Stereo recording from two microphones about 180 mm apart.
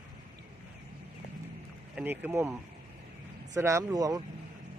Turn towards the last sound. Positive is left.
turn(degrees=-20)  # may be behind; listen again after turning